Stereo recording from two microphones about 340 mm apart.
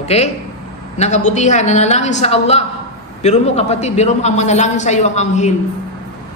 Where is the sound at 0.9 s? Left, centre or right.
Centre.